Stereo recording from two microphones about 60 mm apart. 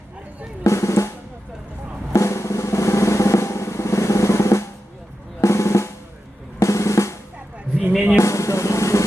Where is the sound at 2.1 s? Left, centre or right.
Left.